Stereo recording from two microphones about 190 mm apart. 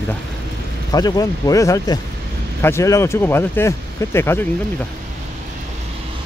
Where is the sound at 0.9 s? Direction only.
20° left (ahead or behind).